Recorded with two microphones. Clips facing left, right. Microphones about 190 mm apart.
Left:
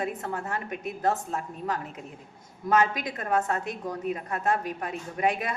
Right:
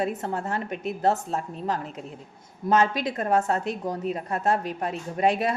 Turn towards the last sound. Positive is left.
turn(degrees=-30)  # may be behind; listen again after turning